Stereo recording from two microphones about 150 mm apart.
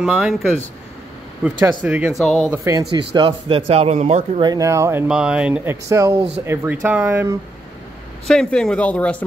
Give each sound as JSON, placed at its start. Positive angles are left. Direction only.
{"t": 0.0, "sound": "speech", "side_deg": -5}
{"t": 1.6, "sound": "speech", "side_deg": -10}
{"t": 2.1, "sound": "speech", "side_deg": 0}
{"t": 2.5, "sound": "speech", "side_deg": -20}
{"t": 4.4, "sound": "speech", "side_deg": -25}
{"t": 5.0, "sound": "speech", "side_deg": -5}
{"t": 8.3, "sound": "speech", "side_deg": 5}